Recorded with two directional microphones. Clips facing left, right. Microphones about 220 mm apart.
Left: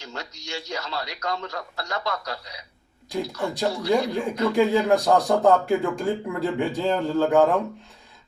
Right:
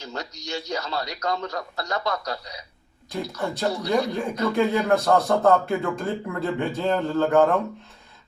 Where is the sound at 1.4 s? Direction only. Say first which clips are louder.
Right 3 dB; 40° right (ahead or behind).